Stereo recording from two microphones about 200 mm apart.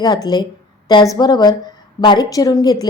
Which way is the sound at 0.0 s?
20° left (ahead or behind).